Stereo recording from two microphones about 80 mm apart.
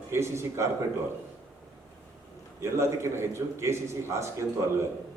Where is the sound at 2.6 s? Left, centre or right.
Right.